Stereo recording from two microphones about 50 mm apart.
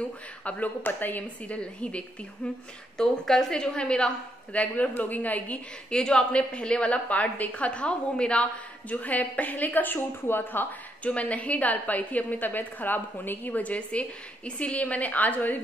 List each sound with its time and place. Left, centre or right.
0.5 s a woman's voice: left
1.6 s a woman's voice: left
3.0 s a woman's voice: centre; by 5.6 s left
5.9 s a woman's voice: centre
8.9 s a woman's voice: left
11.1 s a woman's voice: left
13.5 s a woman's voice: left